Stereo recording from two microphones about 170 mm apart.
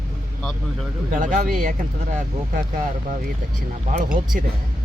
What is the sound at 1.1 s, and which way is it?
Speech, 50° right (ahead or behind).